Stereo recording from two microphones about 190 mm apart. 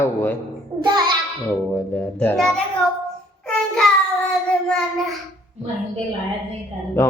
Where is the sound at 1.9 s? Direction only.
5° left (ahead or behind).